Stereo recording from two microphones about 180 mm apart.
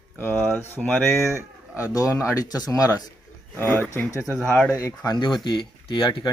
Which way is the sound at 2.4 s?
20° left (ahead or behind).